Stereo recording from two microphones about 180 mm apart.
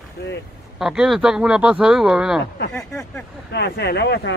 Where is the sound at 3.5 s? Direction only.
65° left (ahead or behind).